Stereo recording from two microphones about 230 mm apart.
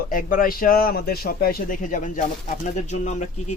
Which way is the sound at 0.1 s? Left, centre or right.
Left.